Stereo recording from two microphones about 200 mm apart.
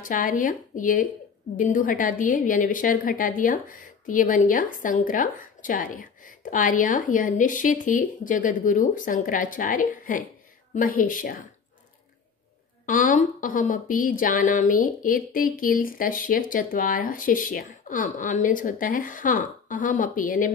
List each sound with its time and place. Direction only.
0.0 s a woman's voice: 40° left (ahead or behind)
12.8 s a woman's voice: 40° left (ahead or behind)